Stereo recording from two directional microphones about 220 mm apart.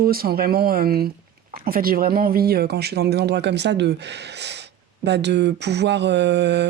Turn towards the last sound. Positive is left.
turn(degrees=-50)  # may be behind; listen again after turning